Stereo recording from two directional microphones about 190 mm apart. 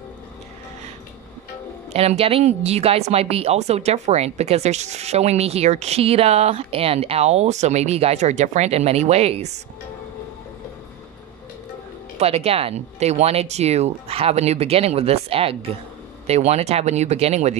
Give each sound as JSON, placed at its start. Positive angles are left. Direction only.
{"t": 1.9, "sound": "speech", "side_deg": -35}
{"t": 12.2, "sound": "speech", "side_deg": -30}